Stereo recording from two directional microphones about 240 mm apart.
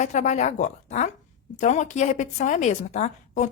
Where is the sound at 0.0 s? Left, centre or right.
Left.